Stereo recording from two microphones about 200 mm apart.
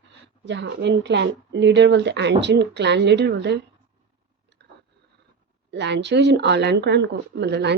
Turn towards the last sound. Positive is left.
turn(degrees=-60)  # may be behind; listen again after turning